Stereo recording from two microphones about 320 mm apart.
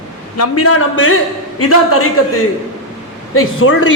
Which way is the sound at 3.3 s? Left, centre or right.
Left.